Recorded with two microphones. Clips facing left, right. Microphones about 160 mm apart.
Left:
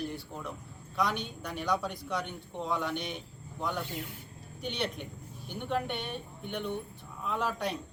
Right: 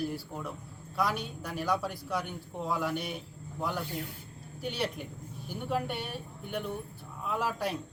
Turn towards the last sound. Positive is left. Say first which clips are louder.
# even
turn(degrees=-5)  # may be behind; listen again after turning